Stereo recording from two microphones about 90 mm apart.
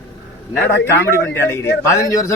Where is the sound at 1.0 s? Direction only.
30° left (ahead or behind).